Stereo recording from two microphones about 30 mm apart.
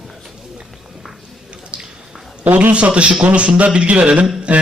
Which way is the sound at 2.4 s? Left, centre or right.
Right.